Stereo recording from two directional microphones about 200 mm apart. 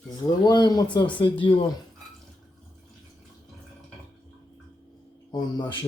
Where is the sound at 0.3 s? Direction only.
20° left (ahead or behind).